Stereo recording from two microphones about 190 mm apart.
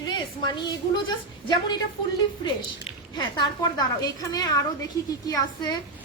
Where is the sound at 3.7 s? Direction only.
20° left (ahead or behind).